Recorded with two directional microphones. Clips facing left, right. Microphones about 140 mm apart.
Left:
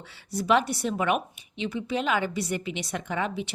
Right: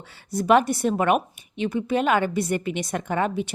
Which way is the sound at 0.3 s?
50° right (ahead or behind).